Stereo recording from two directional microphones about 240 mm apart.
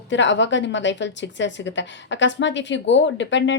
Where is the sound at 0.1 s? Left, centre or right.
Left.